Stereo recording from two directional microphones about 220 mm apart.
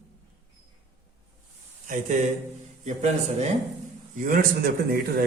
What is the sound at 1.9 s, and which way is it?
A man's voice, 35° right (ahead or behind).